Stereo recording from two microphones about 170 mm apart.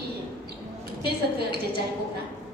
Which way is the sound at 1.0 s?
70° right (ahead or behind).